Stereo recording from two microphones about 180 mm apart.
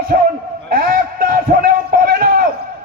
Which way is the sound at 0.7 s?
55° right (ahead or behind).